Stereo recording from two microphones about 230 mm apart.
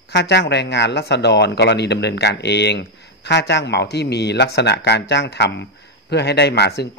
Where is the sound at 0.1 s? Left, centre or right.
Left.